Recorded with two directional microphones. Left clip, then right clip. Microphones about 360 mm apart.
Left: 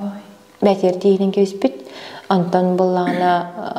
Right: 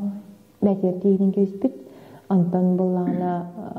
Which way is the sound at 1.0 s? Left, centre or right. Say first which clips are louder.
Left 4 dB; left.